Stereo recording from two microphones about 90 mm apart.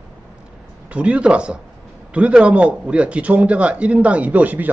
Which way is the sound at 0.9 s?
15° right (ahead or behind).